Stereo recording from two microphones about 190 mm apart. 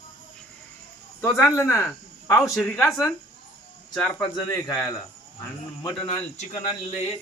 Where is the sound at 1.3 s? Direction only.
10° left (ahead or behind).